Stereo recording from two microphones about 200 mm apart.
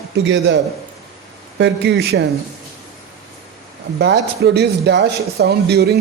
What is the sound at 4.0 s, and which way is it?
Speech, 55° right (ahead or behind).